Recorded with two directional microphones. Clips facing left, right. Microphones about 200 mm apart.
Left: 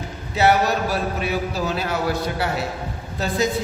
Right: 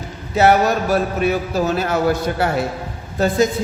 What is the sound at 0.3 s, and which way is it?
A man's voice, 50° right (ahead or behind).